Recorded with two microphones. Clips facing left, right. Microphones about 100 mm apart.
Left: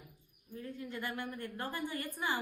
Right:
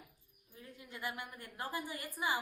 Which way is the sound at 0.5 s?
15° right (ahead or behind).